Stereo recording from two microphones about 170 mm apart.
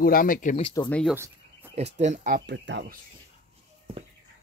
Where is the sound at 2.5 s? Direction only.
90° right.